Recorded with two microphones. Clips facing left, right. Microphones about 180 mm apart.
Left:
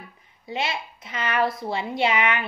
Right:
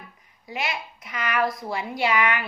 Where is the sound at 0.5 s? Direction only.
25° left (ahead or behind).